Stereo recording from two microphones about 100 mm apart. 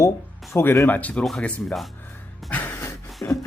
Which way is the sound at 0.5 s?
25° left (ahead or behind).